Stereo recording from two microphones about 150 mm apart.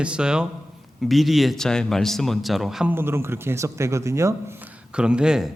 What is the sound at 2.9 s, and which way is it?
Speech, 15° right (ahead or behind).